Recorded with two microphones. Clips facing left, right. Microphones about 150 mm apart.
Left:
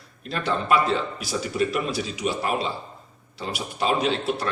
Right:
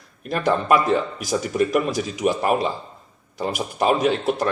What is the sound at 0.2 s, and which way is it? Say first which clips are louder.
Speech: right 5 dB; 50° right (ahead or behind).